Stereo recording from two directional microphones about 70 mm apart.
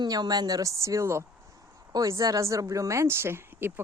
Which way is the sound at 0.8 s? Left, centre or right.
Right.